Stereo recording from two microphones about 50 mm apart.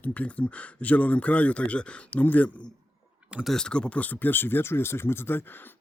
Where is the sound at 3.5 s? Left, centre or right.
Centre.